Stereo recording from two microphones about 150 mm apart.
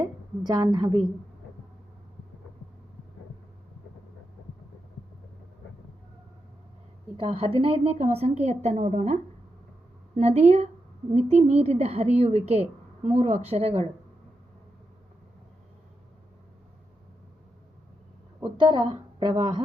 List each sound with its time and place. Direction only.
0.0 s a woman's voice: 25° right (ahead or behind)
7.2 s a woman's voice: 40° right (ahead or behind)
10.2 s a woman's voice: 45° right (ahead or behind)
18.6 s a woman's voice: 30° right (ahead or behind)